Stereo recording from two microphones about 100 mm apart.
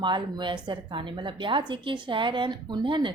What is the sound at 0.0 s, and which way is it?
Speech, 50° right (ahead or behind).